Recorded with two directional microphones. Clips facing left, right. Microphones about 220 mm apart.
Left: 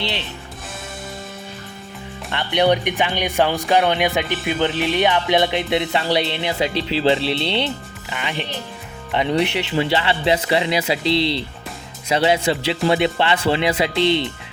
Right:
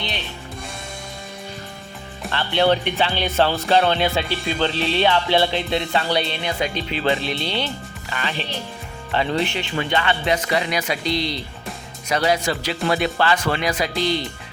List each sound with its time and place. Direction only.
2.3 s speech: 15° left (ahead or behind)